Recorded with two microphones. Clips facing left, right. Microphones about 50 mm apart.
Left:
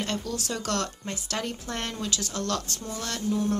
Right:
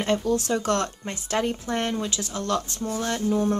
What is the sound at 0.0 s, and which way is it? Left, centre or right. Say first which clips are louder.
Speech: right 8 dB; right.